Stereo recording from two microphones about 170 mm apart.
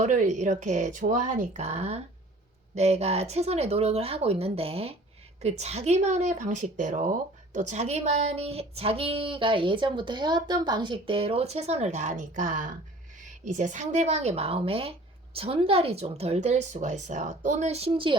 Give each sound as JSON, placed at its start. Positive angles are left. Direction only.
{"t": 0.0, "sound": "speech", "side_deg": -45}